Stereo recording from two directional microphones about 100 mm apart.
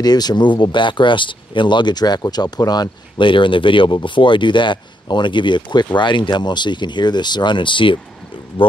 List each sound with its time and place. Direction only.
0.0 s speech: 40° left (ahead or behind); by 8.7 s 60° left (ahead or behind)